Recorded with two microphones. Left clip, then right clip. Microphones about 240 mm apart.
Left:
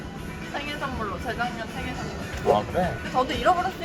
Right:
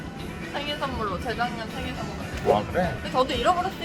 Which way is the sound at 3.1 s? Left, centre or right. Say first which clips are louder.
Even; centre.